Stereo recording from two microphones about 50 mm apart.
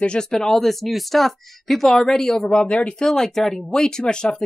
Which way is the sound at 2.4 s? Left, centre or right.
Left.